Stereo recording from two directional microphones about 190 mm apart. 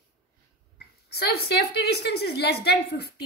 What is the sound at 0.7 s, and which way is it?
Speech, 55° left (ahead or behind).